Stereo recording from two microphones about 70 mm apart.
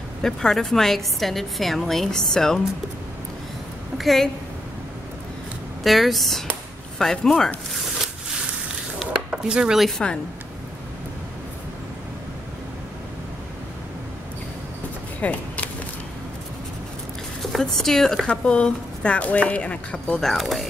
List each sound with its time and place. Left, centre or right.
0.2 s a woman's voice: centre
4.0 s a woman's voice: centre
5.9 s a woman's voice: centre
9.0 s a sound: centre
9.8 s speech: centre
15.1 s a sound: left
17.4 s speech: centre
18.2 s speech: centre